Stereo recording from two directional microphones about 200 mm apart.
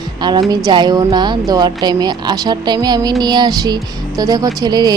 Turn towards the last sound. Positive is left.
turn(degrees=-20)  # may be behind; listen again after turning